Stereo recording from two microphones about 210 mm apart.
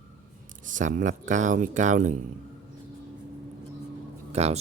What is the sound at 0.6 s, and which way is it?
Speech, 35° right (ahead or behind).